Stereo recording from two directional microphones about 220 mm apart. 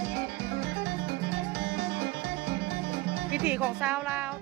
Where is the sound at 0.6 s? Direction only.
50° right (ahead or behind).